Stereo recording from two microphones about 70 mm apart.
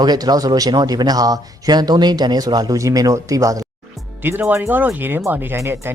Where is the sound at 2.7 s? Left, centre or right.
Right.